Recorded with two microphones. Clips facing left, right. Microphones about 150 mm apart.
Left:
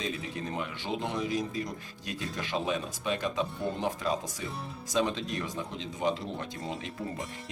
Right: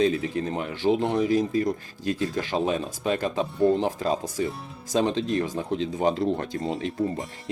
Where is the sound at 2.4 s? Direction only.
35° right (ahead or behind).